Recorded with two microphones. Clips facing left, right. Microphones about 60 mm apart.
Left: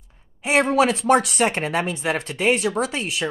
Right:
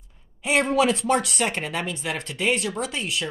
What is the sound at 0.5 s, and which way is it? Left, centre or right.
Speech, left.